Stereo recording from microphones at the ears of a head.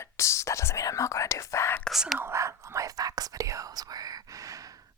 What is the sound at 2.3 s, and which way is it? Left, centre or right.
Whispering, right.